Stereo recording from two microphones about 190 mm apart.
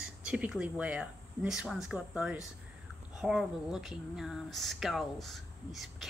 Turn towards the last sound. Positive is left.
turn(degrees=0)  # may be behind; listen again after turning